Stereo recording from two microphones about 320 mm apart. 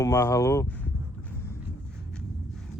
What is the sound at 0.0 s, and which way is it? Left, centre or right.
Speech, centre.